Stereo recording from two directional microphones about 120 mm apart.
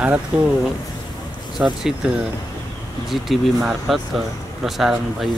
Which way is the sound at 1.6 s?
15° right (ahead or behind).